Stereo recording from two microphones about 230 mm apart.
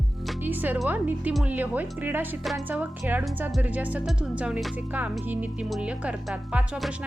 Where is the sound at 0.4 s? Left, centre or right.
Centre.